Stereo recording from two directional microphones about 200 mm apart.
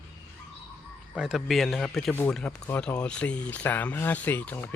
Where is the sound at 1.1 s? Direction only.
Centre (ahead or behind).